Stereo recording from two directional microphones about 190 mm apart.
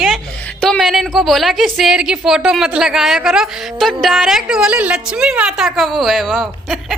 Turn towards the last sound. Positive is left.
turn(degrees=0)  # may be behind; listen again after turning